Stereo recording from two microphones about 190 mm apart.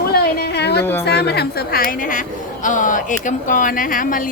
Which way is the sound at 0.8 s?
10° left (ahead or behind).